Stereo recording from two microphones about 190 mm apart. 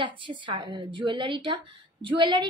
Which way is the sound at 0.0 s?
25° right (ahead or behind).